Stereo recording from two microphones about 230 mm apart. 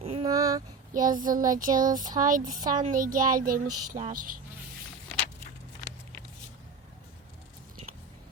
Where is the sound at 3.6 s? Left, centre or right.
Right.